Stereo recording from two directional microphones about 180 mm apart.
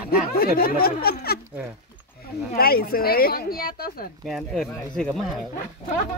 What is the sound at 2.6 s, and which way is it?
A woman's voice, 55° left (ahead or behind).